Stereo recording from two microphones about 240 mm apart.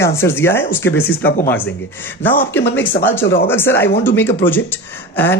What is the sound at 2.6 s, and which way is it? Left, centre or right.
Speech, left.